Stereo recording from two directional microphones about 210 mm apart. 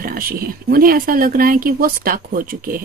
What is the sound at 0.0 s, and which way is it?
Speech, 45° right (ahead or behind).